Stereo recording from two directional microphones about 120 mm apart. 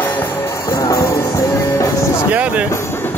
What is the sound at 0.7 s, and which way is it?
Music, 25° left (ahead or behind).